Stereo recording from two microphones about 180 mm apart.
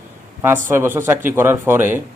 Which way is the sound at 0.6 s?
15° right (ahead or behind).